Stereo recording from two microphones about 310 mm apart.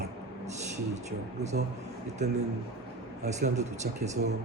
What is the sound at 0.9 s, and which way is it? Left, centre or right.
Speech, right.